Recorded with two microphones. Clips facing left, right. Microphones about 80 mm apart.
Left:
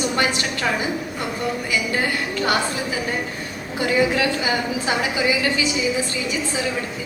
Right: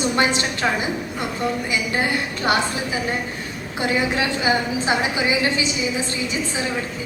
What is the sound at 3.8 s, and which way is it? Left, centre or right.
A woman's voice, right.